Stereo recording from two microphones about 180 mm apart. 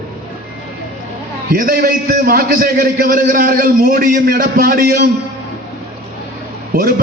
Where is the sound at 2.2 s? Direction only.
50° right (ahead or behind).